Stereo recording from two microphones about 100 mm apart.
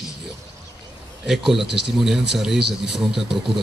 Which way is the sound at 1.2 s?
5° right (ahead or behind).